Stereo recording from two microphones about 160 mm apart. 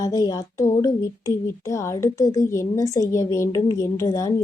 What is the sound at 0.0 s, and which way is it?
Speech, 20° left (ahead or behind).